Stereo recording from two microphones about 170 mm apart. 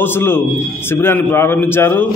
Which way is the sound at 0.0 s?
15° left (ahead or behind).